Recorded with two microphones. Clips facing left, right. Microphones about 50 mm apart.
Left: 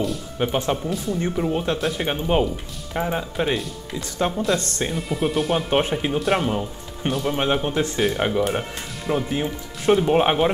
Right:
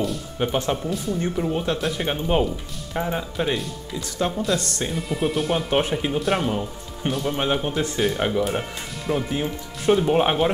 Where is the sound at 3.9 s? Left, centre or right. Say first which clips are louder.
Left 1 dB; left.